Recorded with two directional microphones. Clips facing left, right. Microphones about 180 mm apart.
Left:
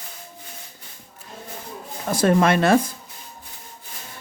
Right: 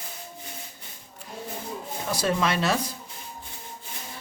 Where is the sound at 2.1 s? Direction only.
50° left (ahead or behind).